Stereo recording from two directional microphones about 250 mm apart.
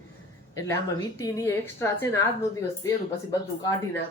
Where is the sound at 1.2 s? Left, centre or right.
Centre.